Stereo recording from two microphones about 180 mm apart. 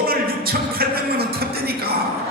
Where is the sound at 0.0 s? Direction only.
55° right (ahead or behind).